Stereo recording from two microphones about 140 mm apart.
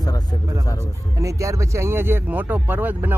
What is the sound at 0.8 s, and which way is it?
Speech, 20° right (ahead or behind).